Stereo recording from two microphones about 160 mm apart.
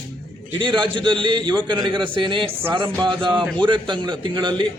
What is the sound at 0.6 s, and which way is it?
A man's voice, 30° right (ahead or behind).